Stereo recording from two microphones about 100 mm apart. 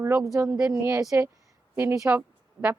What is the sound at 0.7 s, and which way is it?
Speech, 30° right (ahead or behind).